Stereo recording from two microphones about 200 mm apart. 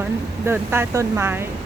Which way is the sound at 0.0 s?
10° right (ahead or behind).